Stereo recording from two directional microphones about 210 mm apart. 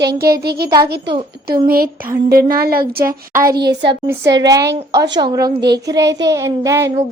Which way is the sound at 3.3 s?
15° right (ahead or behind).